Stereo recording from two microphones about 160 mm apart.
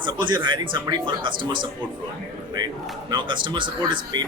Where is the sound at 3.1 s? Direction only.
30° right (ahead or behind).